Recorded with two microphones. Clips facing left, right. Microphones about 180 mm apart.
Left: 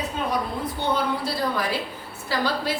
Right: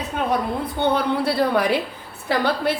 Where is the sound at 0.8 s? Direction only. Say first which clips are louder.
Right 5 dB; 60° right (ahead or behind).